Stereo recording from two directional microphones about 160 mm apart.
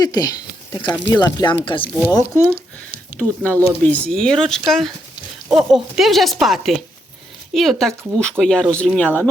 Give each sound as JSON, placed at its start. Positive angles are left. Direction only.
{"t": 0.0, "sound": "speech", "side_deg": 25}
{"t": 3.2, "sound": "a woman's voice", "side_deg": 10}